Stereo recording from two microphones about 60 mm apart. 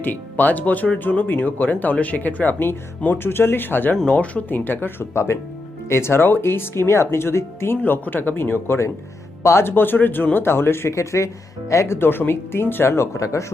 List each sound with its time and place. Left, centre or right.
0.0 s speech: left
4.0 s speech: left
4.4 s speech: left
5.1 s speech: left
7.8 s speech: left
11.9 s speech: left